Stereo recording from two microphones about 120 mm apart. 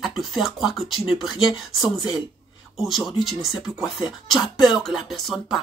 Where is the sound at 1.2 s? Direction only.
45° left (ahead or behind).